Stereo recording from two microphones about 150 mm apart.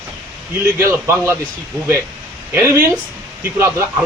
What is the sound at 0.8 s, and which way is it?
Speech, 20° right (ahead or behind).